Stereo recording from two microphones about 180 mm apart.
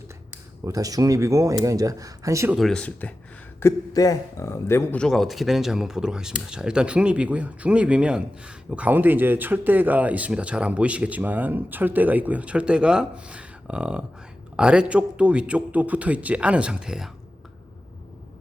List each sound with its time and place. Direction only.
0.6 s speech: 20° right (ahead or behind)
2.6 s speech: 5° left (ahead or behind)
3.6 s speech: 15° left (ahead or behind); by 17.1 s 5° right (ahead or behind)